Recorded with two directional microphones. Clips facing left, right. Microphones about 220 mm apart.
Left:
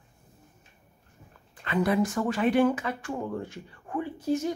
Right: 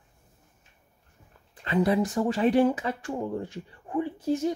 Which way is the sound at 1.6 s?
30° right (ahead or behind).